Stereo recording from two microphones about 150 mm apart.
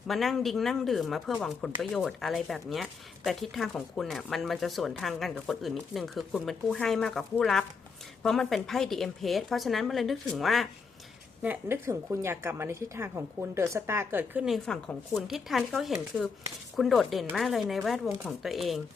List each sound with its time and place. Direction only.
0.1 s speech: centre (ahead or behind)
11.4 s a woman's voice: 15° right (ahead or behind)
14.4 s speech: centre (ahead or behind)